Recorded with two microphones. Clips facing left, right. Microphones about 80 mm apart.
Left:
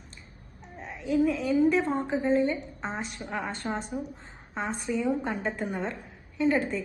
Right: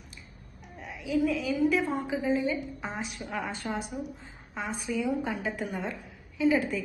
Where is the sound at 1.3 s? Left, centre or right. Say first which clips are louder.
Left 3 dB; centre.